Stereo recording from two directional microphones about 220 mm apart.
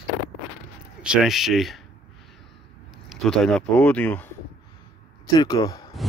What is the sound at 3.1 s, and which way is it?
Speech, centre (ahead or behind).